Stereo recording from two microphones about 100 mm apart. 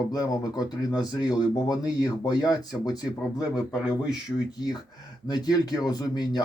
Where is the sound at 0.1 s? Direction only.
40° left (ahead or behind).